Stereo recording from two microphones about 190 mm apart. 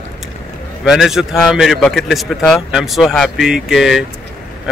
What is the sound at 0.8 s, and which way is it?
Speech, centre (ahead or behind).